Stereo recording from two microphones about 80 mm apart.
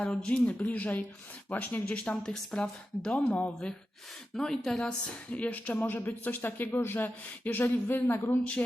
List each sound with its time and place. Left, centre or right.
0.0 s a woman's voice: centre